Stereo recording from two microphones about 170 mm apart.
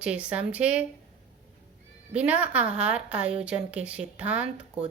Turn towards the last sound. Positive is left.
turn(degrees=-10)  # may be behind; listen again after turning